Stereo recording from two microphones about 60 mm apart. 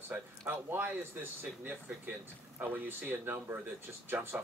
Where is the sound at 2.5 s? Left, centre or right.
Right.